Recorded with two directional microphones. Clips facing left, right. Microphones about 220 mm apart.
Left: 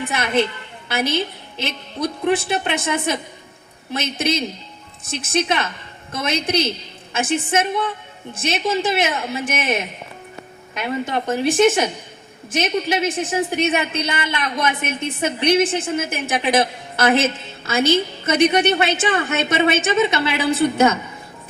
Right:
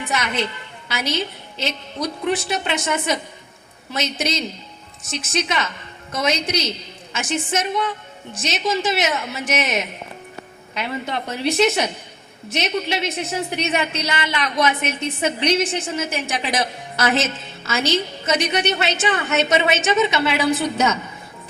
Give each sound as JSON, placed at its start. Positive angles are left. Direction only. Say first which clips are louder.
{"t": 0.1, "sound": "a woman's voice", "louder": "left 4 dB", "side_deg": 55}
{"t": 10.8, "sound": "a woman's voice", "louder": "left 3 dB", "side_deg": 50}